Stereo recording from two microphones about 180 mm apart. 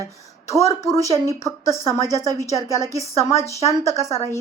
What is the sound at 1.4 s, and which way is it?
Speech, 20° right (ahead or behind).